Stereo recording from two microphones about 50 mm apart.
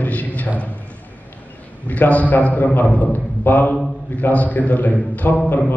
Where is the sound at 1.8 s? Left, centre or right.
Left.